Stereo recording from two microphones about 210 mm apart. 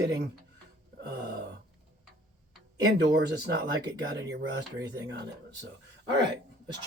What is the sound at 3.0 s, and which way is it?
Speech, 55° right (ahead or behind).